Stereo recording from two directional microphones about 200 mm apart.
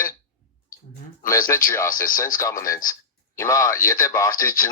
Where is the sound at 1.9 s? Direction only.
45° left (ahead or behind).